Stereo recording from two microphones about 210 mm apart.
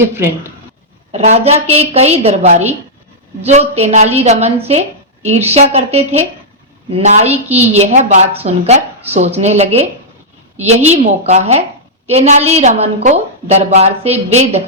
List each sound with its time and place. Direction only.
1.1 s a woman's voice: 30° right (ahead or behind)